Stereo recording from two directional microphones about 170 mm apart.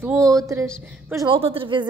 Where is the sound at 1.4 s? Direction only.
30° right (ahead or behind).